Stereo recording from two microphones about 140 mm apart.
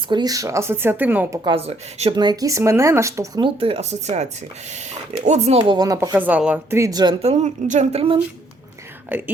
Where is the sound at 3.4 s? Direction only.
40° right (ahead or behind).